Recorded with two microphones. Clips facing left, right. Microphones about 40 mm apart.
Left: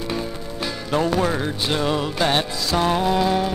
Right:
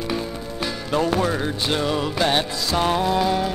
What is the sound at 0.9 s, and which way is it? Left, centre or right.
Music, centre.